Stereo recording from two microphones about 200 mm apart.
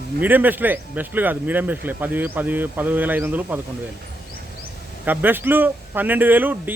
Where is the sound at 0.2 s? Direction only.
10° right (ahead or behind).